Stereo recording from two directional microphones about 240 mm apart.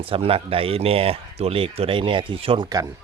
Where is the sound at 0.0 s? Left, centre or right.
Right.